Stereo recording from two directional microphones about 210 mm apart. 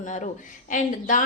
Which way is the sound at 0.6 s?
35° left (ahead or behind).